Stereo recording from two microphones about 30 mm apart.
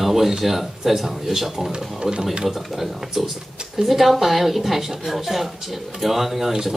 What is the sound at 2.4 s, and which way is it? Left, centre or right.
Speech, centre.